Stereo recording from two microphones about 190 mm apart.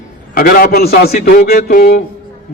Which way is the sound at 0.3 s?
50° left (ahead or behind).